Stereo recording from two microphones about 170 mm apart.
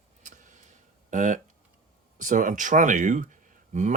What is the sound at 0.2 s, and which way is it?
Tick, 45° right (ahead or behind).